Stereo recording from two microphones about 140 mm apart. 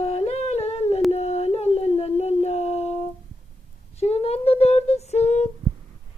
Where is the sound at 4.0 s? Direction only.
50° left (ahead or behind).